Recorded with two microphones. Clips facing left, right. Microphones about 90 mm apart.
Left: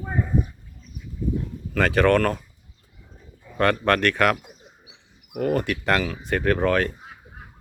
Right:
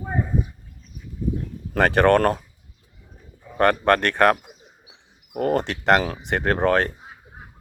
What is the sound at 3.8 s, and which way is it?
Speech, 20° right (ahead or behind).